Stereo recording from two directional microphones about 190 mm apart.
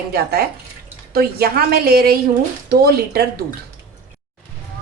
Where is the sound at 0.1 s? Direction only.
55° right (ahead or behind).